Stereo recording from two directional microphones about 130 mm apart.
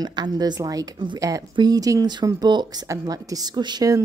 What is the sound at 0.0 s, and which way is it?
A woman's voice, 30° right (ahead or behind).